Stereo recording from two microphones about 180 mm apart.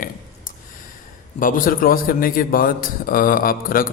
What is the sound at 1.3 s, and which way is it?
A man's voice, 50° left (ahead or behind).